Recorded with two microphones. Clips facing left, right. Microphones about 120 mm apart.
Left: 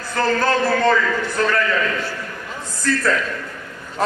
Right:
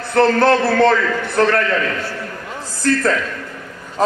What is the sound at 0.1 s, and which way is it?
A man's voice, 65° right (ahead or behind).